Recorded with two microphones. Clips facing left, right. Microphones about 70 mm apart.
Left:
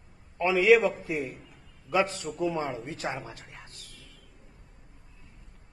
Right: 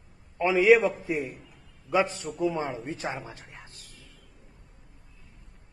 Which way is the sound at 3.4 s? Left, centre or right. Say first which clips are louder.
Even; centre.